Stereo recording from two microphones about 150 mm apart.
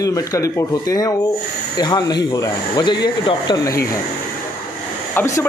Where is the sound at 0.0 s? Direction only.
20° left (ahead or behind).